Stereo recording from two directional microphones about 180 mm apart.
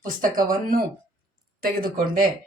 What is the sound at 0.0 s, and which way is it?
A woman's voice, 50° right (ahead or behind).